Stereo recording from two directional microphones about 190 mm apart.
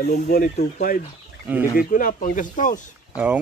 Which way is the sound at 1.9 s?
45° left (ahead or behind).